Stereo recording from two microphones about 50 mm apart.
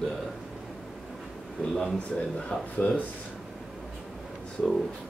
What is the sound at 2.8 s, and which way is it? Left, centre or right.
Speech, left.